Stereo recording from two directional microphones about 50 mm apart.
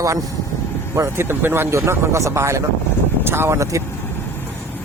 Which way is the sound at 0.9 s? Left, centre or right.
Right.